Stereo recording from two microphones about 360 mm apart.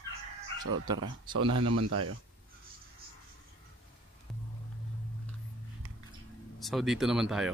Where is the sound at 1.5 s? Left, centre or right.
Right.